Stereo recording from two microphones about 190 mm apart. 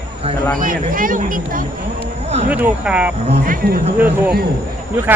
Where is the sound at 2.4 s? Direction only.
10° right (ahead or behind).